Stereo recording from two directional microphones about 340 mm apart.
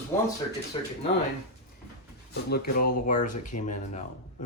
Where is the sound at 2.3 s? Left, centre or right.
Left.